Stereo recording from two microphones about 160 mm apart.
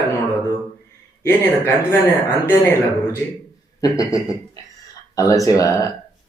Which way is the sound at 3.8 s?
20° left (ahead or behind).